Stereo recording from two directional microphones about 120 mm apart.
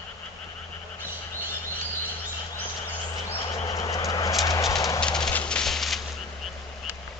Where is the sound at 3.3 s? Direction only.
25° left (ahead or behind).